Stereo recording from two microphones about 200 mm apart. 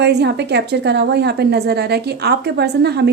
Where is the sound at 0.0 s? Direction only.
55° right (ahead or behind).